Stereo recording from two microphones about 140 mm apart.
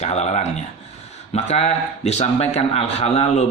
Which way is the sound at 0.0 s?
55° left (ahead or behind).